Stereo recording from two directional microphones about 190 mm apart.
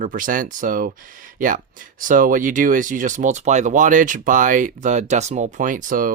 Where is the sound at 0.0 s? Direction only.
45° right (ahead or behind).